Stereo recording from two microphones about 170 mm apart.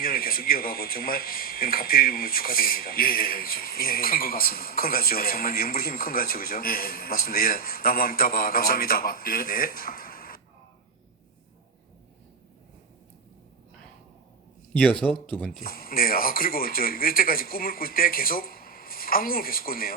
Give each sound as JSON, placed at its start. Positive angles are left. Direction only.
{"t": 0.0, "sound": "speech", "side_deg": 55}
{"t": 14.7, "sound": "speech", "side_deg": 5}
{"t": 15.5, "sound": "speech", "side_deg": 60}